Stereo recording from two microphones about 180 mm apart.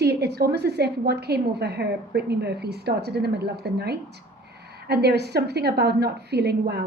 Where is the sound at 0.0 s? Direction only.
65° right (ahead or behind).